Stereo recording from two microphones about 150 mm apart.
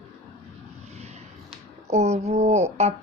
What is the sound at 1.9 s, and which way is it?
Speech, 50° right (ahead or behind).